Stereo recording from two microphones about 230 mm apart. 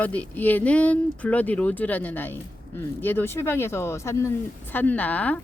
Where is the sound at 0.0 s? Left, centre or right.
Centre.